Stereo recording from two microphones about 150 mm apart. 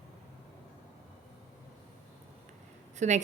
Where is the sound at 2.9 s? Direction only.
50° right (ahead or behind).